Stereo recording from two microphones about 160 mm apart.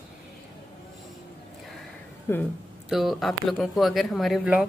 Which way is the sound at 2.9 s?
Centre (ahead or behind).